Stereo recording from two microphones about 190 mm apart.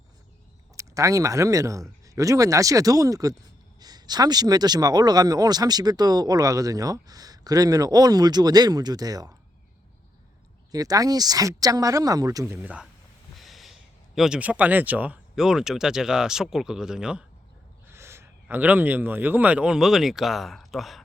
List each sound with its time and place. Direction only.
0.8 s speech: 15° right (ahead or behind)
10.7 s speech: 20° right (ahead or behind)
12.5 s speech: 5° right (ahead or behind)